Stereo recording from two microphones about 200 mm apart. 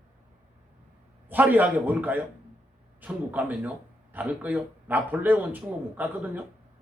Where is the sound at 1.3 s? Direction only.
10° right (ahead or behind).